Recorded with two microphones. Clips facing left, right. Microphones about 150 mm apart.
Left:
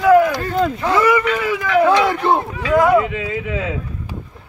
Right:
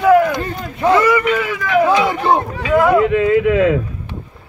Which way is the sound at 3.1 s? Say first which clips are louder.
Right 11 dB; 60° right (ahead or behind).